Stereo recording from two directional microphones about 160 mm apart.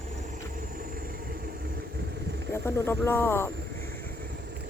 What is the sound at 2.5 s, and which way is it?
Speech, 15° left (ahead or behind).